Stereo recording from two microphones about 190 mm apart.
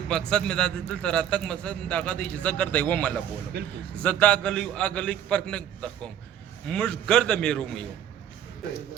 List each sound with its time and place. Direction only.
0.1 s a man's voice: 5° left (ahead or behind)
3.5 s speech: 55° right (ahead or behind)
4.0 s a man's voice: 5° left (ahead or behind)
6.7 s a man's voice: 5° left (ahead or behind)